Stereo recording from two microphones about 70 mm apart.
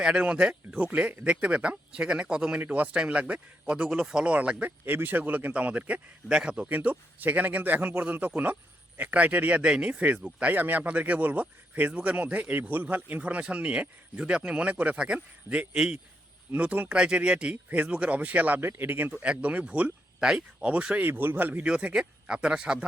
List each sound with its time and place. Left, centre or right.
0.0 s speech: centre
21.6 s speech: centre